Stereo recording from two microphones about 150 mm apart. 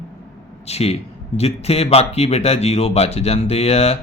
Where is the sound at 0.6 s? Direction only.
45° left (ahead or behind).